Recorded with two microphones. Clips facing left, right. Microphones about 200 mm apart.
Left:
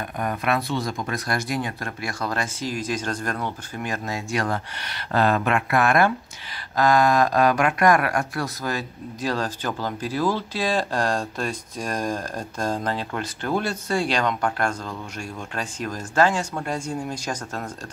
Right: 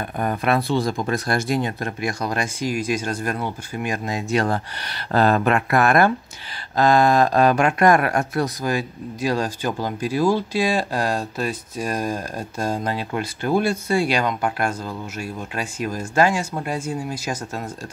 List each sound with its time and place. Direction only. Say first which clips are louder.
0.2 s speech: right 3 dB; 35° right (ahead or behind)
6.8 s speech: right 2 dB; 25° right (ahead or behind)
8.6 s speech: right 4 dB; 10° right (ahead or behind)